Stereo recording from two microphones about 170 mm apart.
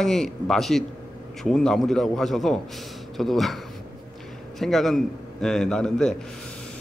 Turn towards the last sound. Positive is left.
turn(degrees=5)  # may be behind; listen again after turning